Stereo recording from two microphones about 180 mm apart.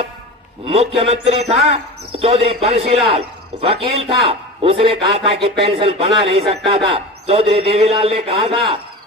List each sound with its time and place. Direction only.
0.7 s speech: 35° right (ahead or behind)